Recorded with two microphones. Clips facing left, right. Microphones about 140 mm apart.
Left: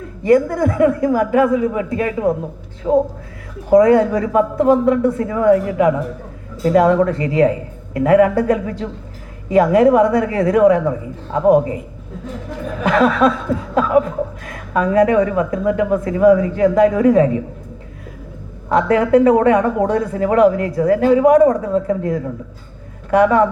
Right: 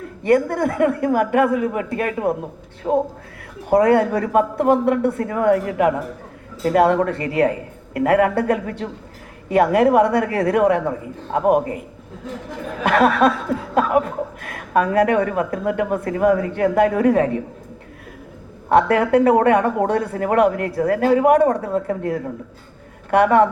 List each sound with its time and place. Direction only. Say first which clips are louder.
0.2 s a woman's voice: left 3 dB; 60° right (ahead or behind)
2.8 s speech: left 4 dB; 30° right (ahead or behind)
3.7 s a woman's voice: left 4 dB; 60° right (ahead or behind)
12.8 s a woman's voice: left 1 dB; 60° right (ahead or behind)
16.6 s a woman's voice: left 4 dB; 60° right (ahead or behind)
18.7 s a woman's voice: left 2 dB; 60° right (ahead or behind)